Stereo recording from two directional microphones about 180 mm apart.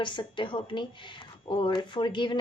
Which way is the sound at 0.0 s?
25° left (ahead or behind).